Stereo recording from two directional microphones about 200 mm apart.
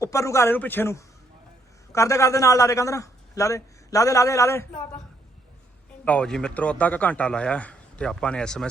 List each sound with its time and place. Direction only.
0.0 s a man's voice: 15° left (ahead or behind)
6.1 s a man's voice: 5° left (ahead or behind)